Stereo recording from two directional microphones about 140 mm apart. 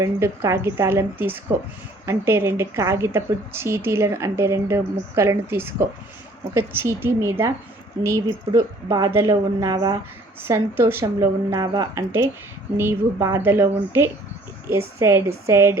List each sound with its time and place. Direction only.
0.0 s a woman's voice: 20° right (ahead or behind)
10.4 s speech: 15° right (ahead or behind)
12.7 s a woman's voice: 20° right (ahead or behind)